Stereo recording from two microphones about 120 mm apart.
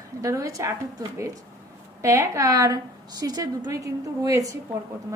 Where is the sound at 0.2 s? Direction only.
25° right (ahead or behind).